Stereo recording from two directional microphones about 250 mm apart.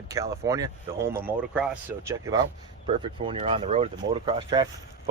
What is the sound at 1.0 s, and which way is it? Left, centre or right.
Speech, right.